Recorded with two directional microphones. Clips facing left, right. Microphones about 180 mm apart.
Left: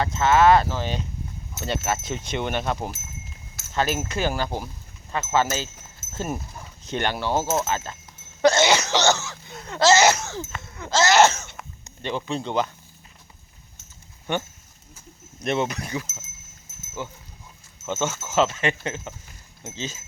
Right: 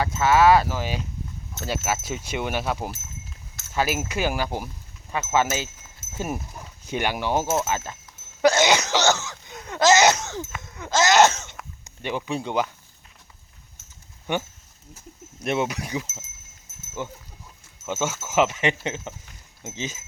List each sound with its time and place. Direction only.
0.0 s speech: 10° right (ahead or behind)
3.5 s a sound: centre (ahead or behind)
3.8 s speech: 10° right (ahead or behind)
8.4 s cough: 10° right (ahead or behind)
9.1 s speech: 15° right (ahead or behind)
14.3 s speech: 15° right (ahead or behind)
15.4 s speech: 10° right (ahead or behind)
17.8 s speech: 10° right (ahead or behind)